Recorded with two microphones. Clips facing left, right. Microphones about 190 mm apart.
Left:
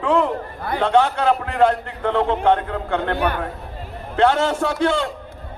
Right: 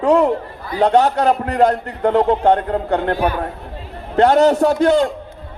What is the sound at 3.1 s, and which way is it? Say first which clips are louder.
Speech: right 3 dB; 60° left (ahead or behind).